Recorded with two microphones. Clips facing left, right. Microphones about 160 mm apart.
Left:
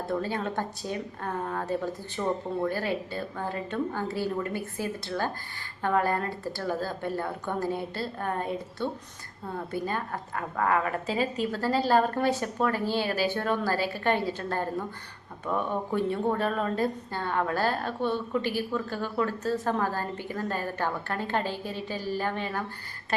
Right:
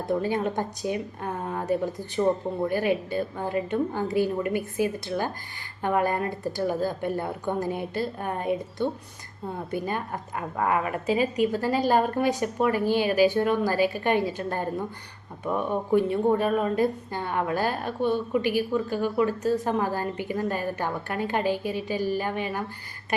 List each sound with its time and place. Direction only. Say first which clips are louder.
0.0 s a woman's voice: right 4 dB; 15° right (ahead or behind)